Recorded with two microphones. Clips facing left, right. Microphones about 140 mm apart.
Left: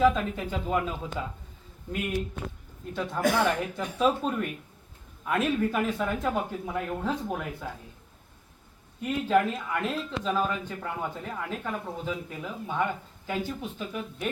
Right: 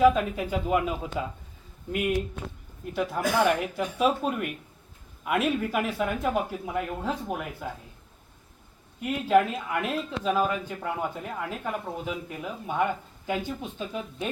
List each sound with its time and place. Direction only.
0.0 s speech: 10° right (ahead or behind)
9.0 s speech: 10° right (ahead or behind)